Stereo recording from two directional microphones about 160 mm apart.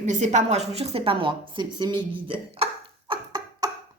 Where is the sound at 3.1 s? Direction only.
30° right (ahead or behind).